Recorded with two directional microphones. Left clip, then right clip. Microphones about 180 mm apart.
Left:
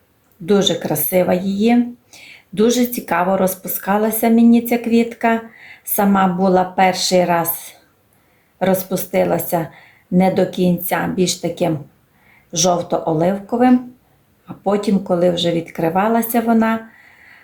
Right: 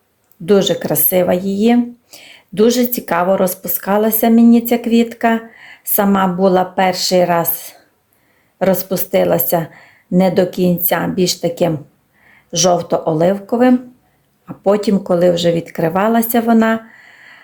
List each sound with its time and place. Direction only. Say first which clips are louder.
0.4 s speech: right 3 dB; 35° right (ahead or behind)